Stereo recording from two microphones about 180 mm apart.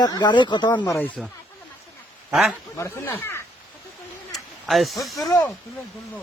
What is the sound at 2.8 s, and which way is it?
Speech, 15° left (ahead or behind).